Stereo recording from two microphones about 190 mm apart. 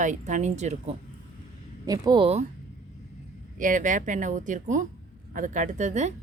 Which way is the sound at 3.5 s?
45° right (ahead or behind).